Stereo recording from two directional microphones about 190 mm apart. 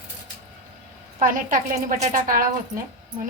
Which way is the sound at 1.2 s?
45° right (ahead or behind).